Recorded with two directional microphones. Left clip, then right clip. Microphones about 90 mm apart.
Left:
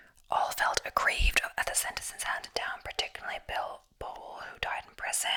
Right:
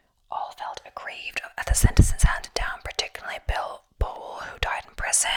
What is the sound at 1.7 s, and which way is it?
Speech, 20° right (ahead or behind).